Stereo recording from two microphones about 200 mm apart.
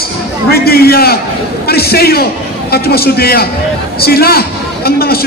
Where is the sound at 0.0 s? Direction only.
50° left (ahead or behind).